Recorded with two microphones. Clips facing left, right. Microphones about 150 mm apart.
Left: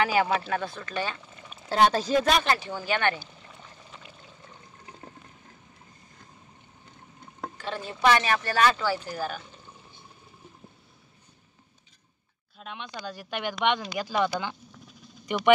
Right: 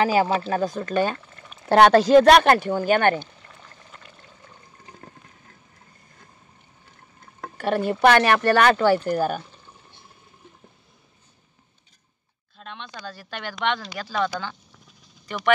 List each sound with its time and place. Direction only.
0.0 s speech: 35° right (ahead or behind)
1.7 s speech: 70° right (ahead or behind); by 3.2 s 45° right (ahead or behind)
3.2 s pour: 5° left (ahead or behind)
7.5 s speech: 60° right (ahead or behind)
12.5 s speech: 10° left (ahead or behind)